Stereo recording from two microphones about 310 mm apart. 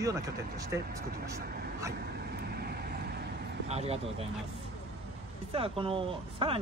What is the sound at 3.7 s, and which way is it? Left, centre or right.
Speech, centre.